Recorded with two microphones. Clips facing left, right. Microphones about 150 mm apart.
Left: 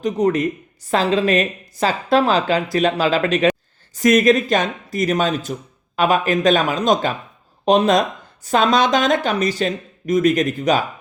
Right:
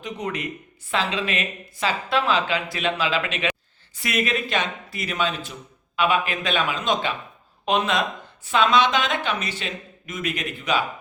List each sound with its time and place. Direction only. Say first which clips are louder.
0.0 s speech: left 12 dB; 40° left (ahead or behind)